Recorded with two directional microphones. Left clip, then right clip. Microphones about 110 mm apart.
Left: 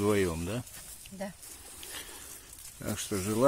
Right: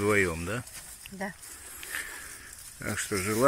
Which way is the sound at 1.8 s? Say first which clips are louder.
Right 8 dB; 25° left (ahead or behind).